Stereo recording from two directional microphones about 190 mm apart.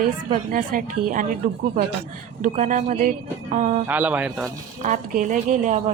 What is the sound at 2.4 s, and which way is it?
Speech, 40° right (ahead or behind).